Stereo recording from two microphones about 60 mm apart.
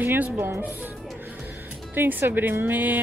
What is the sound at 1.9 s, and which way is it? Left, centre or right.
Speech, right.